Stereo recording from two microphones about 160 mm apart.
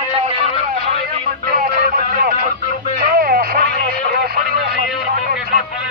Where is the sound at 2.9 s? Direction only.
65° right (ahead or behind).